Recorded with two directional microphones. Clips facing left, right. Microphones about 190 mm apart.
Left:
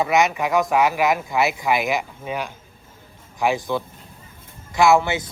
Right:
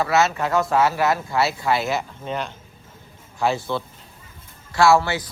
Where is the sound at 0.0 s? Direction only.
15° left (ahead or behind).